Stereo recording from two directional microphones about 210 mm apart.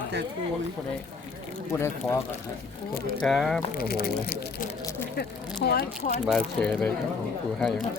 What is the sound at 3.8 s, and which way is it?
Speech, 45° left (ahead or behind).